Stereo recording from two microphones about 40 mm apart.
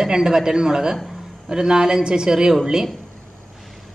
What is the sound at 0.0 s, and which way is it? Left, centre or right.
Speech, centre.